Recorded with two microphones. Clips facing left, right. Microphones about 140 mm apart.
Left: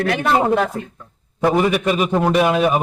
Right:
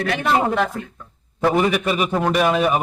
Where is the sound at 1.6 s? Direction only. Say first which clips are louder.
Left 2 dB; centre (ahead or behind).